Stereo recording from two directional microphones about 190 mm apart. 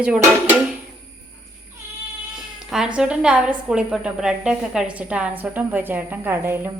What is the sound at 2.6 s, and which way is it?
Speech, 5° right (ahead or behind).